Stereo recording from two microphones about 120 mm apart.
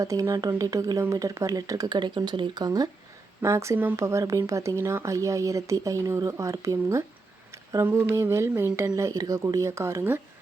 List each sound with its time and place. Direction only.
0.0 s speech: 25° right (ahead or behind)